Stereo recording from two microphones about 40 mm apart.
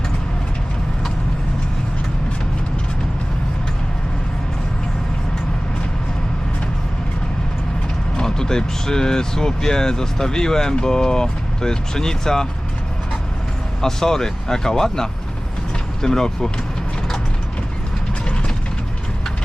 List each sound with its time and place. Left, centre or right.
8.2 s speech: centre
13.8 s speech: centre